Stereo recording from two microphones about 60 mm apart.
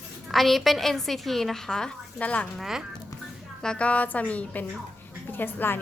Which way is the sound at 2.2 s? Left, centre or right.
Left.